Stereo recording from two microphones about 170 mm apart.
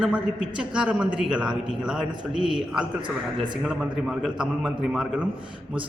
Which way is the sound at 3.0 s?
25° right (ahead or behind).